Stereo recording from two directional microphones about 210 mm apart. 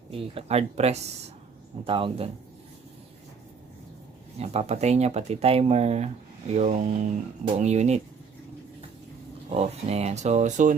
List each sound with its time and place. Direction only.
0.1 s a man's voice: 30° right (ahead or behind)
4.4 s speech: 30° right (ahead or behind)
9.6 s speech: 30° right (ahead or behind)